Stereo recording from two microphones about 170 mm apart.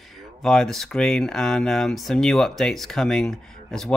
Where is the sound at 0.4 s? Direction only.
Centre (ahead or behind).